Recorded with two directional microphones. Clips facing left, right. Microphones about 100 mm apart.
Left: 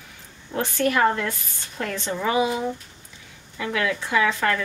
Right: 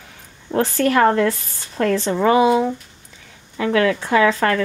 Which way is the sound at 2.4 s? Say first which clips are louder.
Right 8 dB; 80° right.